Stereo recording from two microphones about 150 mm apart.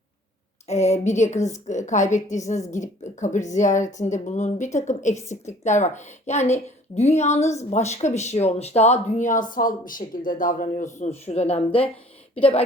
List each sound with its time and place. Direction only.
0.7 s a woman's voice: 50° left (ahead or behind)